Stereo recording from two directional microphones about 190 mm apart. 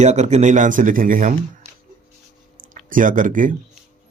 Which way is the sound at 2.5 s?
45° right (ahead or behind).